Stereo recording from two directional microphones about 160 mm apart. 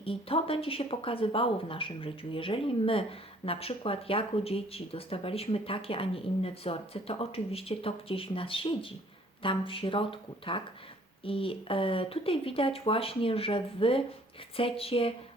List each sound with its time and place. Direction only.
0.0 s speech: 35° left (ahead or behind)